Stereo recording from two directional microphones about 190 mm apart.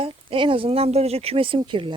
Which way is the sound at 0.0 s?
30° right (ahead or behind).